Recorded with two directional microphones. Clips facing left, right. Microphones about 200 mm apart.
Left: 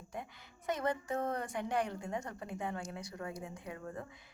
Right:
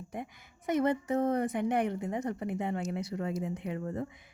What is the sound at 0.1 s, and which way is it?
A woman's voice, 20° right (ahead or behind).